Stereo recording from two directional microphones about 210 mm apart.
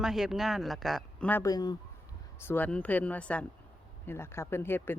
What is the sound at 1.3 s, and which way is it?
Speech, 15° left (ahead or behind).